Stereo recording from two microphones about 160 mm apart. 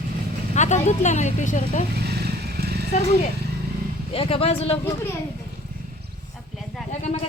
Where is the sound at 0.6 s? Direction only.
45° left (ahead or behind).